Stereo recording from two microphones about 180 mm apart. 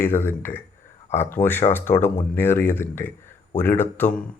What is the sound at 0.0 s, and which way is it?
Speech, 10° left (ahead or behind).